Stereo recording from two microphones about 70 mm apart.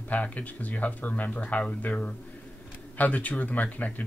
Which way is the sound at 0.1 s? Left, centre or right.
Left.